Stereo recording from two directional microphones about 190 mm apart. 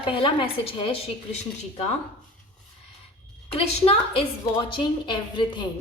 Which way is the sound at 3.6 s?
30° left (ahead or behind).